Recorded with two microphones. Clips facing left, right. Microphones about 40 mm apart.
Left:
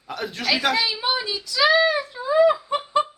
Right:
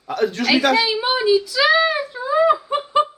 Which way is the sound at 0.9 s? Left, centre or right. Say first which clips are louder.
Right 8 dB; centre.